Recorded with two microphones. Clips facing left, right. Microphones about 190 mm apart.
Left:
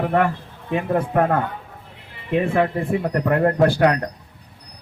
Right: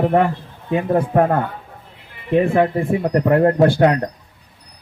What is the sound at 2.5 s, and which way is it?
Speech, 20° right (ahead or behind).